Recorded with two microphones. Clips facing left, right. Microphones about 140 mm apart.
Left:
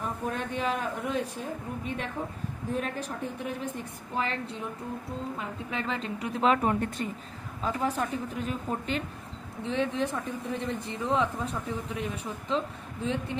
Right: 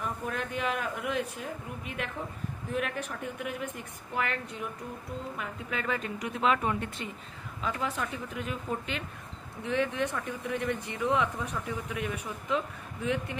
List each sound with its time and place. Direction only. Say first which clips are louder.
0.0 s a woman's voice: left 2 dB; 30° left (ahead or behind)
2.7 s a woman's voice: left 1 dB; 30° left (ahead or behind)